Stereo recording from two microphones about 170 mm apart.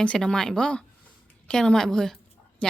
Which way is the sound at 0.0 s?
5° left (ahead or behind).